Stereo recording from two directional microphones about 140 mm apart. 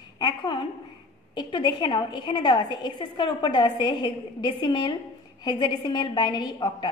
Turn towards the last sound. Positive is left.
turn(degrees=30)  # may be behind; listen again after turning